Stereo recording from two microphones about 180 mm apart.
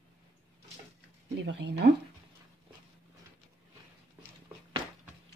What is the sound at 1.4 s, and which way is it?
Speech, 75° right (ahead or behind).